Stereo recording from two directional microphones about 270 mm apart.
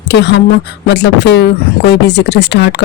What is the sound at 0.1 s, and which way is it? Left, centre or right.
Speech, left.